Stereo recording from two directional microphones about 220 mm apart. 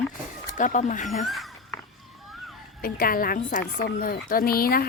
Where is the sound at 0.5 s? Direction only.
35° left (ahead or behind).